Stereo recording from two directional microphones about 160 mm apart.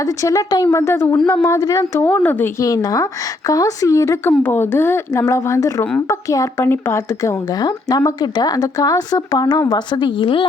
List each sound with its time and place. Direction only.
0.0 s a woman's voice: 20° left (ahead or behind)